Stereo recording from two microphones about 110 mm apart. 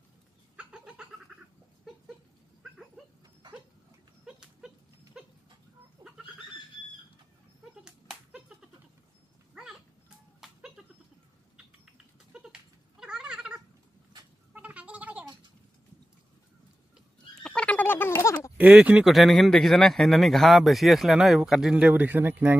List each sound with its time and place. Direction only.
0.6 s goat: 10° right (ahead or behind)
4.3 s dog: 5° right (ahead or behind)
5.2 s goat: 5° right (ahead or behind)
6.0 s chicken: 45° right (ahead or behind)
7.8 s a sound: 5° right (ahead or behind)
9.5 s a sound: 5° right (ahead or behind)
12.3 s cat: 5° right (ahead or behind)
17.4 s a sound: 10° left (ahead or behind)
18.6 s speech: 10° right (ahead or behind)
19.0 s speech: centre (ahead or behind); by 22.6 s 15° right (ahead or behind)